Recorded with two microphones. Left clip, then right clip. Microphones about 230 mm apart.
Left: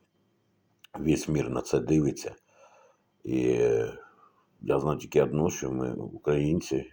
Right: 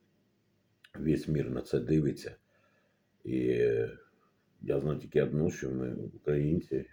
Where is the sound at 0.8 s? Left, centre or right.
Left.